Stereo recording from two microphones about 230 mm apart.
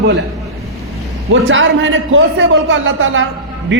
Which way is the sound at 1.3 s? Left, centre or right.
Right.